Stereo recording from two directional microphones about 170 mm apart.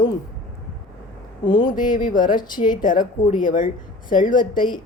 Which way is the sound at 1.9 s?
50° left (ahead or behind).